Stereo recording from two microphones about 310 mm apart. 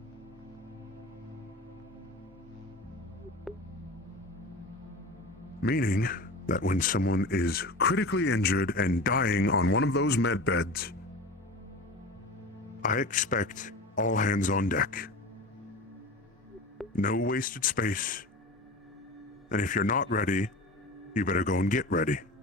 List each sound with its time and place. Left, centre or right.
3.5 s a sound: centre
5.6 s speech: left
12.8 s speech: left
16.9 s speech: left
19.5 s speech: left